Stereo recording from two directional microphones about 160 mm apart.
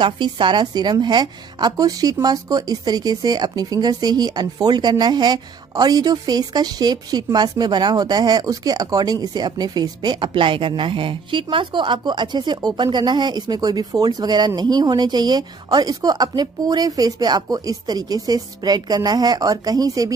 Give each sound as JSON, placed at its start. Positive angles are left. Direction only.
{"t": 0.0, "sound": "a woman's voice", "side_deg": -30}